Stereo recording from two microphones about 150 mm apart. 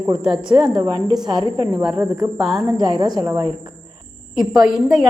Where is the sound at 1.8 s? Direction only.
5° right (ahead or behind).